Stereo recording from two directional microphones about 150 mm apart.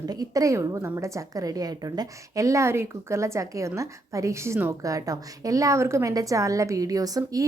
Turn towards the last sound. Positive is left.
turn(degrees=-25)  # may be behind; listen again after turning